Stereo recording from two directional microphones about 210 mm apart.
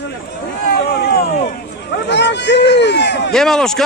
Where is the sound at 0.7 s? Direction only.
50° left (ahead or behind).